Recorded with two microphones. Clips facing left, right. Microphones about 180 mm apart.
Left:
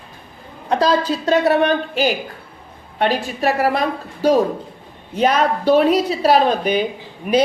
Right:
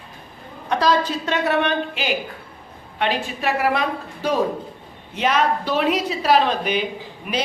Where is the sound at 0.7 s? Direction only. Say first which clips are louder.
Left 3 dB; 30° left (ahead or behind).